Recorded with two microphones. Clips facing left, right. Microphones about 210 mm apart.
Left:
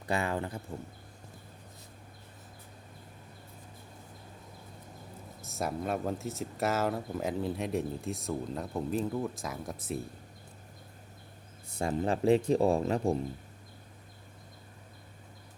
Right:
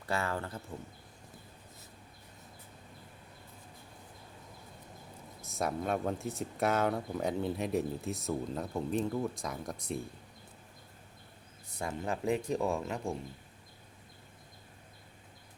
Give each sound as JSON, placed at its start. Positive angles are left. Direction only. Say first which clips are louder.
{"t": 0.0, "sound": "speech", "louder": "left 3 dB", "side_deg": 15}
{"t": 5.5, "sound": "speech", "louder": "even", "side_deg": 0}
{"t": 11.8, "sound": "speech", "louder": "left 6 dB", "side_deg": 35}